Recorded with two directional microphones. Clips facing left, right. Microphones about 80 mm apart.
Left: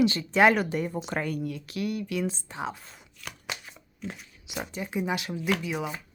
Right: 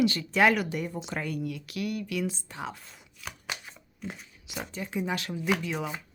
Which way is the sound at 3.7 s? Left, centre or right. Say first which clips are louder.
Left 1 dB; centre.